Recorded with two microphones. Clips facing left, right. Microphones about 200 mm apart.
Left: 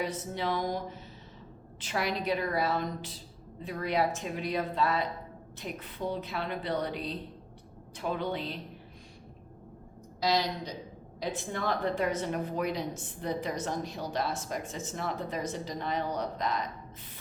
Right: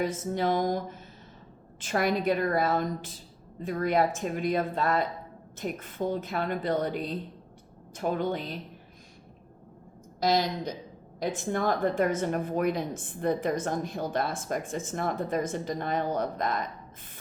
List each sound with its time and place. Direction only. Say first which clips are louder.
0.0 s a woman's voice: right 5 dB; 45° right (ahead or behind)
10.2 s a woman's voice: right 3 dB; 50° right (ahead or behind)